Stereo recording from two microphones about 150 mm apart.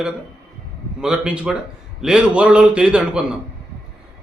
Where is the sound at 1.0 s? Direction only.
5° right (ahead or behind).